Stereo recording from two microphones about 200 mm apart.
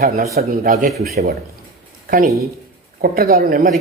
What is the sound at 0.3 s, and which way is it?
Speech, 50° right (ahead or behind).